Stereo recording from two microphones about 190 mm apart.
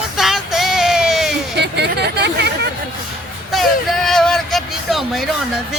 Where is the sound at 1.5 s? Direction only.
60° right (ahead or behind).